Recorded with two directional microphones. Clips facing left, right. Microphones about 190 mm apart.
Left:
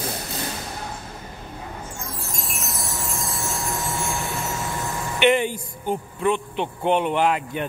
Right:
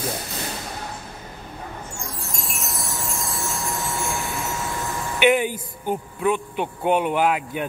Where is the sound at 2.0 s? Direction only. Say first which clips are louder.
Even; centre (ahead or behind).